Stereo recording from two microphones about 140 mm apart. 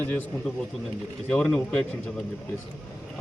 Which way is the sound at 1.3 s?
5° left (ahead or behind).